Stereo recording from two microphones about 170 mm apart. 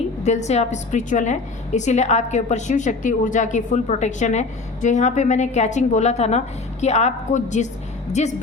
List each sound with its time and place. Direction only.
0.2 s a woman's voice: 40° left (ahead or behind)